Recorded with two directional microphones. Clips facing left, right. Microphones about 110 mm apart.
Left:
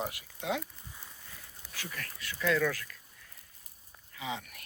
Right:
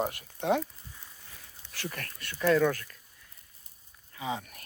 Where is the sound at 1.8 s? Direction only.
50° right (ahead or behind).